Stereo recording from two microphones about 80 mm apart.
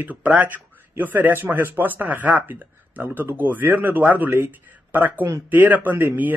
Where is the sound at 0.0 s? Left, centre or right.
Centre.